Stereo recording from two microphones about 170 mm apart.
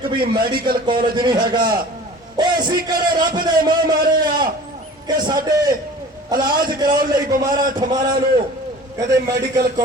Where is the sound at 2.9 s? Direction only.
60° right (ahead or behind).